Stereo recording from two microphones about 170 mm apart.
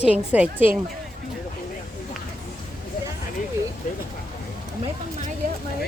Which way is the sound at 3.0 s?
65° left (ahead or behind).